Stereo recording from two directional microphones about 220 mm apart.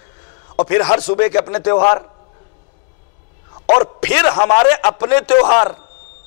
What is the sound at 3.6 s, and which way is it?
A man's voice, 20° left (ahead or behind).